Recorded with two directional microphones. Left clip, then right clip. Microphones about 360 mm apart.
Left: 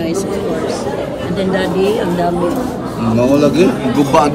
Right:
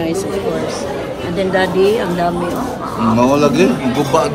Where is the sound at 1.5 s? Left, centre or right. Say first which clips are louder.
Right 2 dB; centre.